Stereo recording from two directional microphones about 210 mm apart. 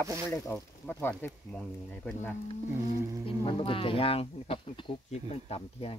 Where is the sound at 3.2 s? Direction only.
25° left (ahead or behind).